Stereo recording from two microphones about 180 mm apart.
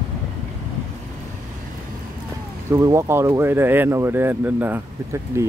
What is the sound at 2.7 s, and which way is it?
Speech, 15° right (ahead or behind).